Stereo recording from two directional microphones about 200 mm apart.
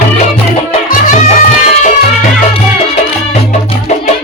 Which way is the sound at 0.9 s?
40° left (ahead or behind).